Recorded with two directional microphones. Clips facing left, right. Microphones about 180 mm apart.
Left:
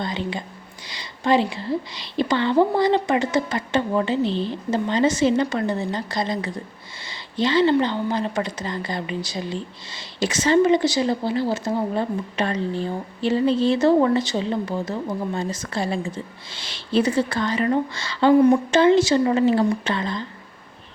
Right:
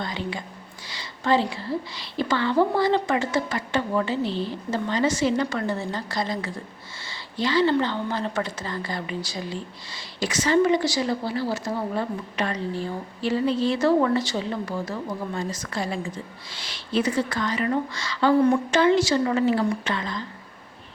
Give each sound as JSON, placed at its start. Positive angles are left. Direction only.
{"t": 0.0, "sound": "speech", "side_deg": 20}